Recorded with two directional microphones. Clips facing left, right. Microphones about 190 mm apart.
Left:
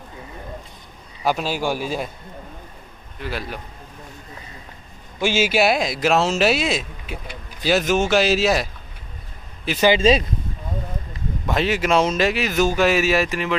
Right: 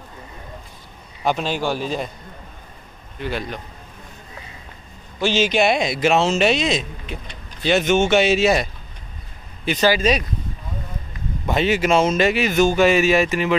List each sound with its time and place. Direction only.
1.2 s a man's voice: 5° left (ahead or behind)
3.2 s speech: 5° left (ahead or behind)
5.2 s speech: 10° left (ahead or behind)
9.8 s speech: 25° left (ahead or behind)
11.4 s speech: centre (ahead or behind)